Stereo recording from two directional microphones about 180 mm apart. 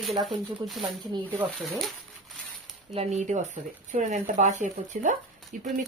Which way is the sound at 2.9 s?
40° right (ahead or behind).